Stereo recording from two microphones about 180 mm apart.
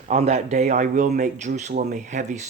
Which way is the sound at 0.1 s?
35° right (ahead or behind).